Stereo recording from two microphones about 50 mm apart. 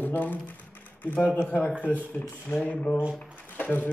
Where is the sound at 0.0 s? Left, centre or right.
Left.